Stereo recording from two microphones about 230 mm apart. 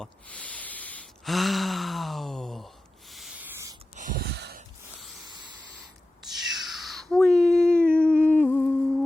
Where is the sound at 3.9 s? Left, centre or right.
Right.